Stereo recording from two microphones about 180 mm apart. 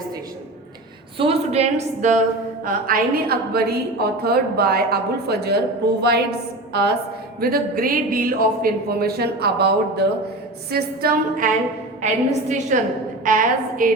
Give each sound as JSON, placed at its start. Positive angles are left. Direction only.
{"t": 1.2, "sound": "a woman's voice", "side_deg": -35}